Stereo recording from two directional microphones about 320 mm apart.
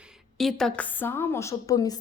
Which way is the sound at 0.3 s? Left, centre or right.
Centre.